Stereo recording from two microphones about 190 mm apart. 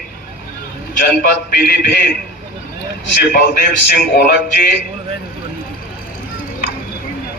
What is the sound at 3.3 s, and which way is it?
A man's voice, 55° left (ahead or behind).